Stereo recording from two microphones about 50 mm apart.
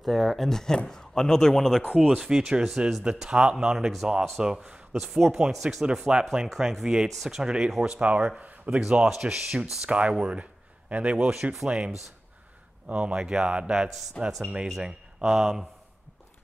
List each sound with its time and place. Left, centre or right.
0.0 s a man's voice: centre
2.0 s speech: centre
4.9 s speech: centre
9.8 s speech: right
14.2 s a man's voice: centre
14.8 s speech: centre